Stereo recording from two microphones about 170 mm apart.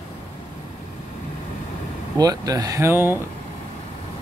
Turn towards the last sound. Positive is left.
turn(degrees=-15)  # may be behind; listen again after turning